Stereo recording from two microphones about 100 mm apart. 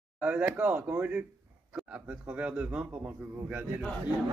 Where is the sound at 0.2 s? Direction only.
15° right (ahead or behind).